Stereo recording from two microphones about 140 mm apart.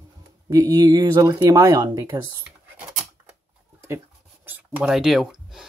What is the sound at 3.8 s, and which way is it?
Writing, 15° right (ahead or behind).